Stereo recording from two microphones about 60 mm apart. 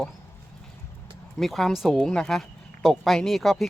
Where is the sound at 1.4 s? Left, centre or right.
Centre.